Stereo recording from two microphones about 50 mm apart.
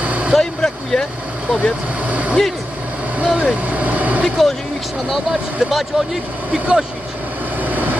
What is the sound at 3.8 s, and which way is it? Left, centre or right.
Vehicle, right.